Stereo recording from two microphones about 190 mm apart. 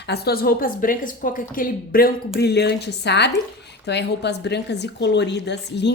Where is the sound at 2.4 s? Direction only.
60° left (ahead or behind).